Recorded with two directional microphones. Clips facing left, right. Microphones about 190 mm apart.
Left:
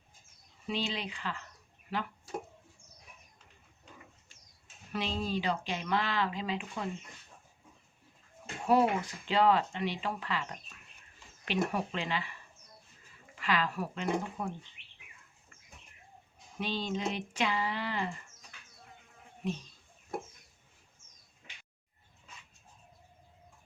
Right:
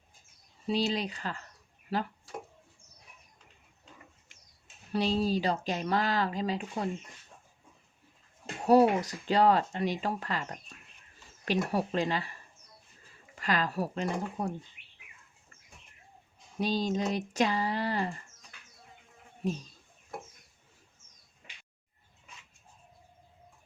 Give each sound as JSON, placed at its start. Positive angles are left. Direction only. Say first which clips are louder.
{"t": 0.7, "sound": "speech", "louder": "right 6 dB", "side_deg": -40}
{"t": 4.9, "sound": "speech", "louder": "right 6 dB", "side_deg": -35}
{"t": 8.6, "sound": "speech", "louder": "right 5 dB", "side_deg": -40}
{"t": 16.6, "sound": "speech", "louder": "right 5 dB", "side_deg": -40}
{"t": 19.4, "sound": "speech", "louder": "right 3 dB", "side_deg": -40}